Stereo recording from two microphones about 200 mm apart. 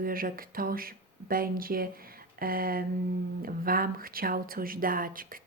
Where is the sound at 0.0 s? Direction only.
45° right (ahead or behind).